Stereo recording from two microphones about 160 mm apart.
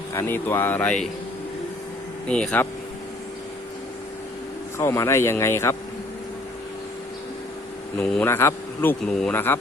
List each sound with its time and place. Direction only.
0.1 s speech: 15° left (ahead or behind)
2.2 s speech: 5° left (ahead or behind)
4.8 s speech: 15° left (ahead or behind)
7.9 s speech: 5° left (ahead or behind)